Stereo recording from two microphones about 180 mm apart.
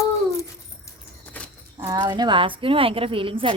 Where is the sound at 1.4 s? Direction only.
10° left (ahead or behind).